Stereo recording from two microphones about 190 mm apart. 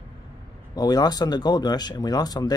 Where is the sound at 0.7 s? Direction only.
20° left (ahead or behind).